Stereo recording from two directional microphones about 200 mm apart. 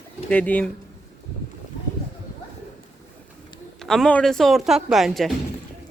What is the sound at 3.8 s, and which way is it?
Speech, centre (ahead or behind).